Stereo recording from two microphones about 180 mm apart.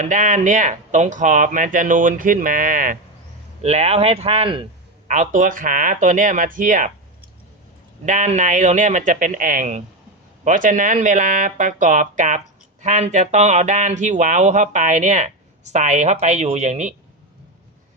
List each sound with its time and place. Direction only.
0.0 s speech: 45° right (ahead or behind)
3.6 s speech: 35° right (ahead or behind)
5.0 s speech: 45° right (ahead or behind)
8.0 s speech: 40° right (ahead or behind)